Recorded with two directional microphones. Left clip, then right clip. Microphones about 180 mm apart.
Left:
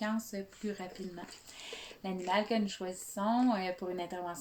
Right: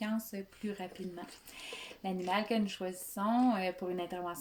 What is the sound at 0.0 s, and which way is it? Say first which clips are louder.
Speech: left 2 dB; 15° right (ahead or behind).